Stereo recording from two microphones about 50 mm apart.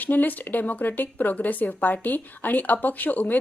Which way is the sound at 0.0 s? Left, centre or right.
Left.